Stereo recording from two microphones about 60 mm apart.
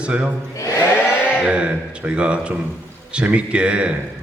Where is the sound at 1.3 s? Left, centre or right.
Centre.